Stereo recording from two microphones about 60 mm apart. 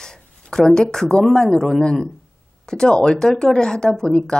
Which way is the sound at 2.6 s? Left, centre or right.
Centre.